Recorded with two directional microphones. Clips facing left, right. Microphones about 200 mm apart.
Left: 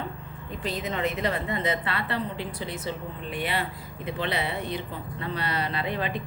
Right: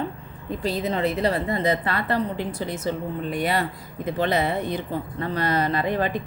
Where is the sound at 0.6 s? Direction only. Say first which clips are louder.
Right 5 dB; 35° right (ahead or behind).